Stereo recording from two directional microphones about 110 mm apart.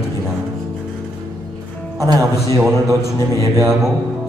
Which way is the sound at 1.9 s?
35° right (ahead or behind).